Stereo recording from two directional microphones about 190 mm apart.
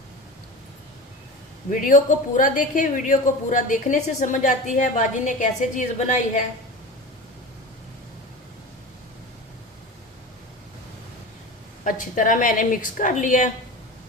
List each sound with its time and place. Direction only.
1.7 s speech: 40° left (ahead or behind)
11.8 s a woman's voice: 40° left (ahead or behind)